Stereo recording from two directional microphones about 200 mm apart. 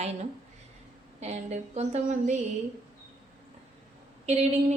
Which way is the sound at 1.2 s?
35° right (ahead or behind).